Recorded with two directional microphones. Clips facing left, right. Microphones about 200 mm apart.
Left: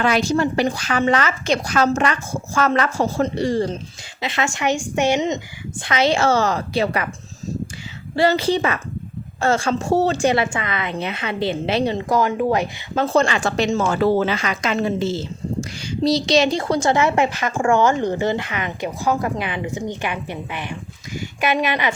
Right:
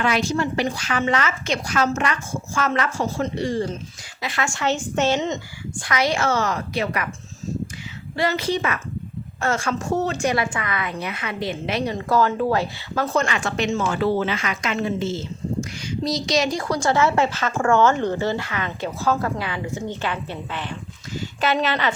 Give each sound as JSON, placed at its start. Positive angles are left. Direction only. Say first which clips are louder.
{"t": 0.0, "sound": "a woman's voice", "louder": "left 4 dB", "side_deg": 35}
{"t": 4.2, "sound": "a woman's voice", "louder": "left 3 dB", "side_deg": 20}
{"t": 8.1, "sound": "a woman's voice", "louder": "left 5 dB", "side_deg": 30}
{"t": 12.0, "sound": "a woman's voice", "louder": "left 1 dB", "side_deg": 15}